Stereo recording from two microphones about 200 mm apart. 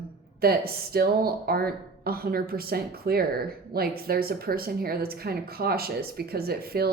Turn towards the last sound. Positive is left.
turn(degrees=-50)  # may be behind; listen again after turning